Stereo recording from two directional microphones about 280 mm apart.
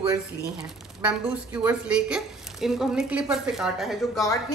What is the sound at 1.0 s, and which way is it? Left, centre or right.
A woman's voice, centre.